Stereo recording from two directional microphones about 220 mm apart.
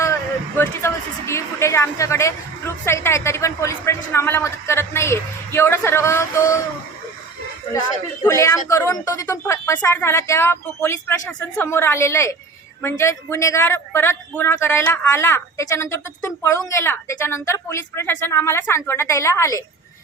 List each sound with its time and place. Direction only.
0.0 s a woman's voice: 10° left (ahead or behind)
7.7 s a woman's voice: 15° left (ahead or behind)